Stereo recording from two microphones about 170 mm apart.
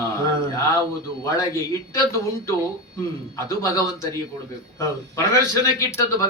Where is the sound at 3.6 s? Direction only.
20° left (ahead or behind).